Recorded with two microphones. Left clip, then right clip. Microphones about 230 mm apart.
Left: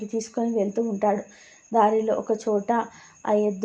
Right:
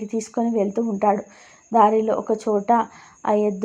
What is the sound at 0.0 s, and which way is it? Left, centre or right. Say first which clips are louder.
A woman's voice: right 3 dB; centre.